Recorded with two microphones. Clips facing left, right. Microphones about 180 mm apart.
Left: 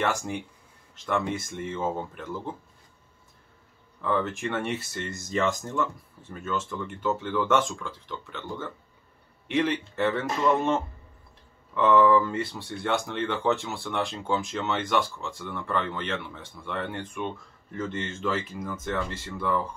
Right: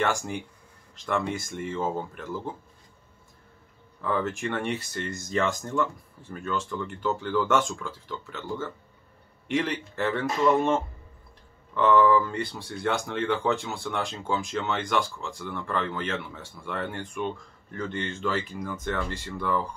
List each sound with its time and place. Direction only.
0.0 s speech: centre (ahead or behind)
4.0 s speech: centre (ahead or behind)